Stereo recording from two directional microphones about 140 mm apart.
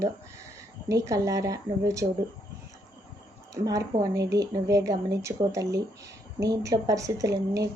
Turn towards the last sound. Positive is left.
turn(degrees=-25)  # may be behind; listen again after turning